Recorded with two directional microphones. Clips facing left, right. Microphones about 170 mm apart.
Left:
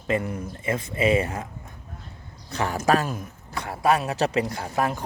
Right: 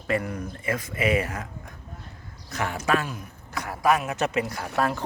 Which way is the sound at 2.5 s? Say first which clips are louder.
Left 3 dB; 30° left (ahead or behind).